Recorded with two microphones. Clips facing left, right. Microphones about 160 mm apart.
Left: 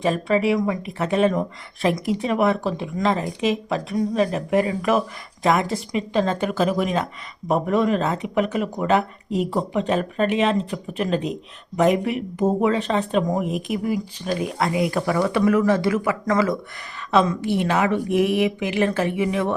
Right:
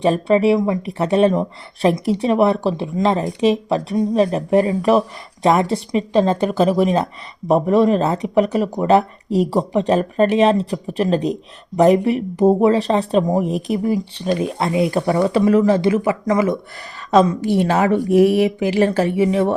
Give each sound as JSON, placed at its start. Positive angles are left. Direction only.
{"t": 0.0, "sound": "speech", "side_deg": -30}
{"t": 16.2, "sound": "speech", "side_deg": -15}
{"t": 17.1, "sound": "speech", "side_deg": -40}